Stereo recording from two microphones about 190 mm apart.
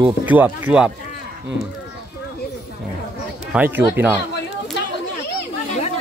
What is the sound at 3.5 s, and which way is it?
Speech, 10° right (ahead or behind).